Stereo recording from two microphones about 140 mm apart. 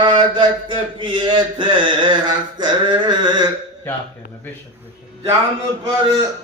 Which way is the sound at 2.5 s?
35° right (ahead or behind).